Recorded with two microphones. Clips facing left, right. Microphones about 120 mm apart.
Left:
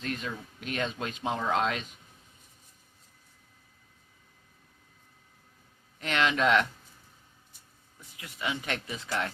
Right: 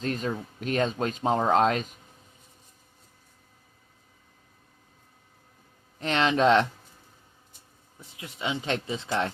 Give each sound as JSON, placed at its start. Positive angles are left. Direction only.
{"t": 0.0, "sound": "speech", "side_deg": -40}
{"t": 6.0, "sound": "speech", "side_deg": -30}
{"t": 7.9, "sound": "speech", "side_deg": -25}